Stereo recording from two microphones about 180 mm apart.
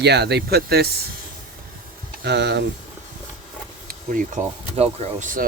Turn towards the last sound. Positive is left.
turn(degrees=-45)  # may be behind; listen again after turning